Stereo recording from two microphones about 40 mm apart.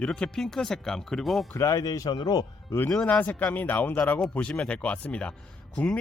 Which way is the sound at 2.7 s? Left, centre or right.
Left.